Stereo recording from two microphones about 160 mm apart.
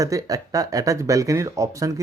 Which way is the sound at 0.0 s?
20° right (ahead or behind).